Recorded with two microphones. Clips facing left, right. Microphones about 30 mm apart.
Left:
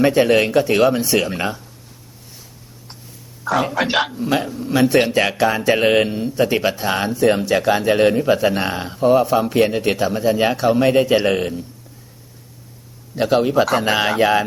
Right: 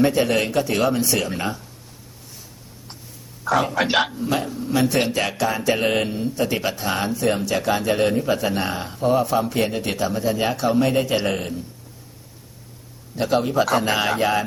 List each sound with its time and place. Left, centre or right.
0.0 s speech: left
3.4 s a man's voice: centre
4.2 s a man's voice: left
13.1 s a man's voice: left